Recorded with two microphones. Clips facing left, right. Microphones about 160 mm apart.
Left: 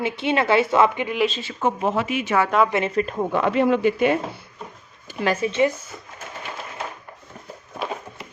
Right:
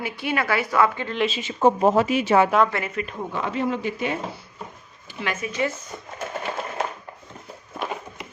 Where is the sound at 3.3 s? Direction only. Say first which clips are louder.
Left 6 dB; 65° left (ahead or behind).